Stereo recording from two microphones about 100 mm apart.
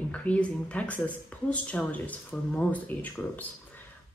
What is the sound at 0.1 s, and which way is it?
Speech, 15° left (ahead or behind).